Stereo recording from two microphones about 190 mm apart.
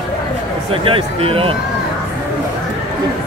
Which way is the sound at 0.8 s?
30° right (ahead or behind).